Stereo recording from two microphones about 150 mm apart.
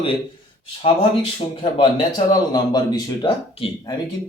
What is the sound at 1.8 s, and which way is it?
A man's voice, 25° left (ahead or behind).